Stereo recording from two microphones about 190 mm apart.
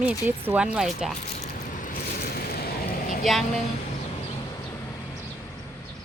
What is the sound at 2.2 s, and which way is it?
Vehicle, 55° left (ahead or behind).